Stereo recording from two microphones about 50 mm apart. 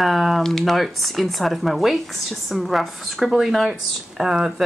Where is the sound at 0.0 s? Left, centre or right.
Centre.